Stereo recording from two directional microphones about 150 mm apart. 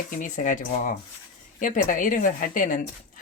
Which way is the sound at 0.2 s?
60° left (ahead or behind).